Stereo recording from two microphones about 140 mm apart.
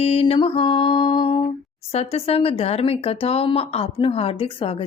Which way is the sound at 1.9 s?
45° left (ahead or behind).